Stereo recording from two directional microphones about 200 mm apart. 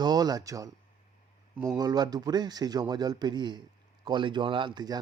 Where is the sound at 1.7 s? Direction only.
20° right (ahead or behind).